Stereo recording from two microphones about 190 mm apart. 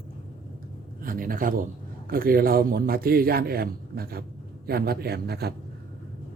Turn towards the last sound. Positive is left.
turn(degrees=-55)  # may be behind; listen again after turning